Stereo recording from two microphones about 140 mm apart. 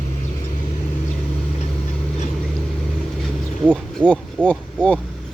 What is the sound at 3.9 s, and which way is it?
Speech, 10° left (ahead or behind).